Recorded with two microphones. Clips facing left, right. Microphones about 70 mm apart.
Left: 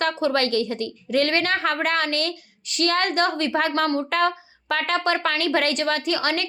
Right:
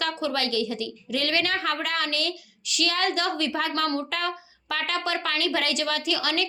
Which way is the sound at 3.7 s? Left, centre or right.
Left.